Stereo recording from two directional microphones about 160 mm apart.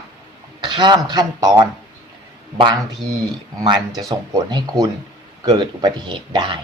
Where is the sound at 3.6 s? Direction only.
30° right (ahead or behind).